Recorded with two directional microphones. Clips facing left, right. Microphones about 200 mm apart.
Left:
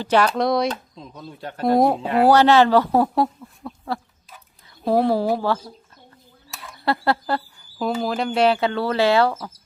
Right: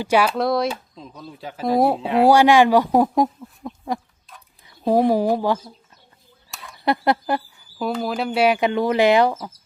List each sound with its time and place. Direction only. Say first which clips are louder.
0.0 s speech: even; 10° right (ahead or behind)
2.2 s speech: right 1 dB; 10° right (ahead or behind)
3.6 s goat: right 2 dB; 15° right (ahead or behind)
4.9 s speech: right 2 dB; 15° right (ahead or behind)
6.8 s speech: right 2 dB; 15° right (ahead or behind)
7.6 s speech: left 1 dB; 5° right (ahead or behind)